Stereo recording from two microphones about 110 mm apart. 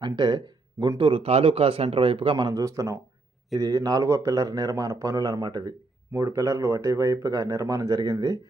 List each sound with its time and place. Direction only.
0.0 s speech: 40° right (ahead or behind)
2.6 s speech: 30° right (ahead or behind)
6.1 s speech: 25° right (ahead or behind)